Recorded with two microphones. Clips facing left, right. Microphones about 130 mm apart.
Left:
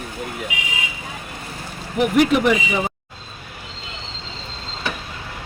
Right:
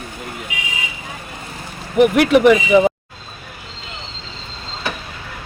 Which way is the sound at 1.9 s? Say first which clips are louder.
Right 4 dB; 75° right (ahead or behind).